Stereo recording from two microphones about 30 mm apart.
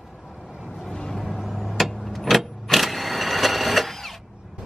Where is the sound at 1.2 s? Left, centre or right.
Centre.